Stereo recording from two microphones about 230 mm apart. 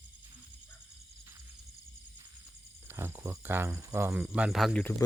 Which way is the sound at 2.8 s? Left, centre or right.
Centre.